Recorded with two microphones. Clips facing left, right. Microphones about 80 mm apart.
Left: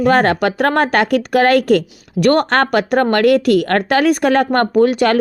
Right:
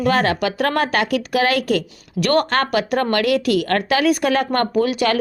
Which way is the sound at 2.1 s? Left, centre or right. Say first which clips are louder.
Left 4 dB; left.